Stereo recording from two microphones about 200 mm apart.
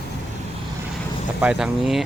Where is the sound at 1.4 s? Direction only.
Centre (ahead or behind).